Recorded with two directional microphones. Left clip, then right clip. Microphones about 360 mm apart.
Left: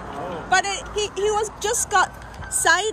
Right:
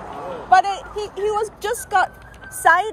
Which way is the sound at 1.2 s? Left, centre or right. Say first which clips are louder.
Right 2 dB; centre.